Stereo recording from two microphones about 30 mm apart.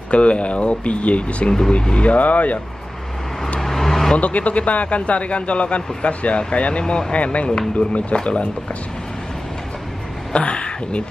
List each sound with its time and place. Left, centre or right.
0.1 s speech: left
2.1 s speech: left
3.6 s vehicle: centre
4.2 s speech: left
6.8 s speech: left
7.7 s speech: left
10.4 s speech: left